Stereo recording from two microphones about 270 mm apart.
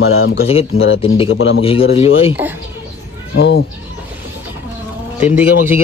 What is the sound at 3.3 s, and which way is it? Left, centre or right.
Speech, left.